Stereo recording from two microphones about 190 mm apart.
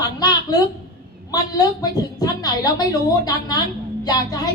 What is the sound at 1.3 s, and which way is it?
A woman's voice, 20° left (ahead or behind).